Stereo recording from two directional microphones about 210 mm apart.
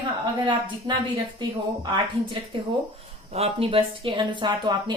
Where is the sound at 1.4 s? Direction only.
20° right (ahead or behind).